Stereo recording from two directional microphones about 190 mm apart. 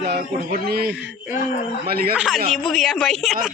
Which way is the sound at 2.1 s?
5° right (ahead or behind).